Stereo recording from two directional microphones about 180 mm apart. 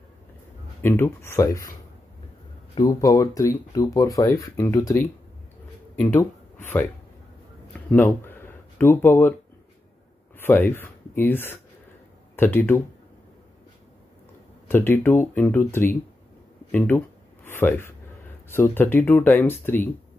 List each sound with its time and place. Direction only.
0.8 s speech: 15° left (ahead or behind)
5.9 s a sound: 10° left (ahead or behind)
10.4 s speech: 10° left (ahead or behind)
14.7 s speech: 10° left (ahead or behind)